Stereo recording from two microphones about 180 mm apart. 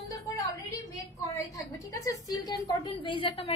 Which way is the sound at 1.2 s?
20° left (ahead or behind).